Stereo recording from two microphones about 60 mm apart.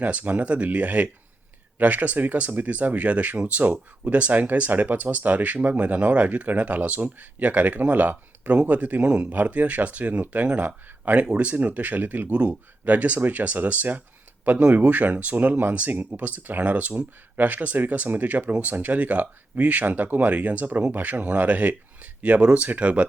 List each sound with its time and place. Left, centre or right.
0.0 s speech: right